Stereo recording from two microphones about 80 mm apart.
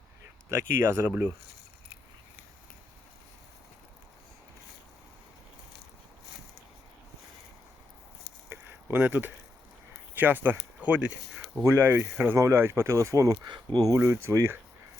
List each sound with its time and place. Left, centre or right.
0.5 s speech: right
8.4 s a sound: right
10.2 s speech: right
11.6 s speech: right
13.9 s speech: right